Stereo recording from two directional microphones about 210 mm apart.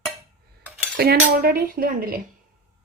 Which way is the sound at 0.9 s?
50° right (ahead or behind).